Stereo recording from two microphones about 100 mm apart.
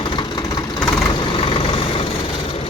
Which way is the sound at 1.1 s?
55° left (ahead or behind).